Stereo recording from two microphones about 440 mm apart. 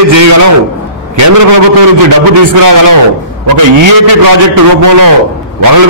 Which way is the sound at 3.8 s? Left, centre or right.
Right.